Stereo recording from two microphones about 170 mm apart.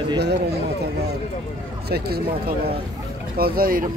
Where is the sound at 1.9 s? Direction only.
65° right (ahead or behind).